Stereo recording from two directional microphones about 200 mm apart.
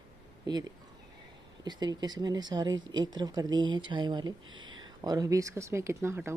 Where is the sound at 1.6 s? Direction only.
20° right (ahead or behind).